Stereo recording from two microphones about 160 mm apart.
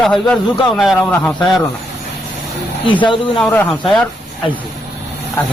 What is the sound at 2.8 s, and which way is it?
Speech, 30° left (ahead or behind).